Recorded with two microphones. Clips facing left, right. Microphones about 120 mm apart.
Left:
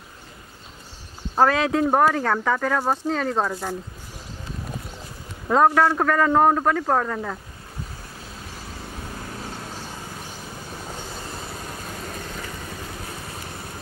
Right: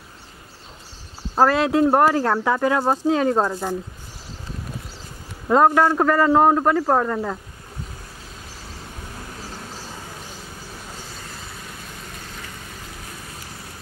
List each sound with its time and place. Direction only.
1.3 s a man's voice: centre (ahead or behind)
5.5 s a man's voice: 5° right (ahead or behind)